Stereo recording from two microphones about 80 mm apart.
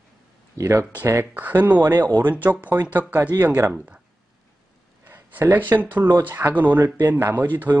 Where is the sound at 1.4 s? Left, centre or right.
Right.